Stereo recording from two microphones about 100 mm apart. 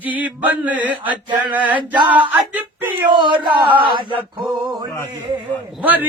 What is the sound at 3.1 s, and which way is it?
Speech, 50° right (ahead or behind).